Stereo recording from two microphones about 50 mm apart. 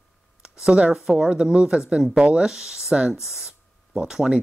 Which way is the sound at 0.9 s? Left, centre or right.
Centre.